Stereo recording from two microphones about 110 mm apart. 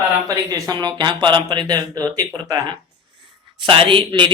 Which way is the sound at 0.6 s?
40° right (ahead or behind).